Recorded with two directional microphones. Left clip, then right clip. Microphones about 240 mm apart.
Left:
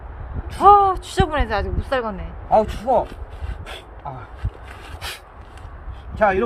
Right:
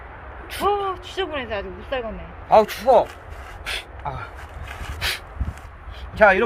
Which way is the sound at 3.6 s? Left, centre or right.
Centre.